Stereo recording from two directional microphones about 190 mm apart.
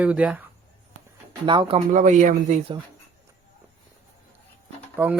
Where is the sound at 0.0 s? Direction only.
5° right (ahead or behind).